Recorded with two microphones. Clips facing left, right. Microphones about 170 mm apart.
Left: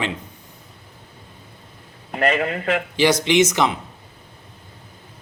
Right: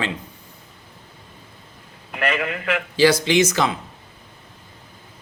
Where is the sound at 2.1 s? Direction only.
40° left (ahead or behind).